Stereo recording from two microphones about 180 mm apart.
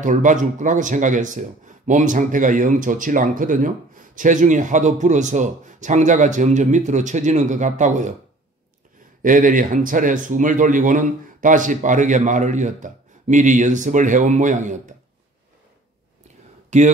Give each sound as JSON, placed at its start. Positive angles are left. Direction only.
{"t": 0.0, "sound": "speech", "side_deg": -45}
{"t": 9.2, "sound": "speech", "side_deg": -45}
{"t": 16.7, "sound": "speech", "side_deg": -40}